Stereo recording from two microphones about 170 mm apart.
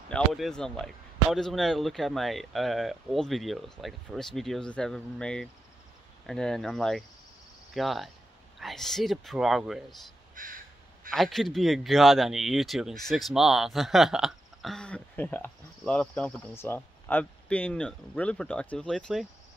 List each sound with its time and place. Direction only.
0.1 s speech: centre (ahead or behind)
10.3 s crow: 55° right (ahead or behind)
11.1 s speech: centre (ahead or behind)